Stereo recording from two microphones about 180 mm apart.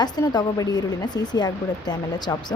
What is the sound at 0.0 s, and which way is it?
Speech, 20° left (ahead or behind).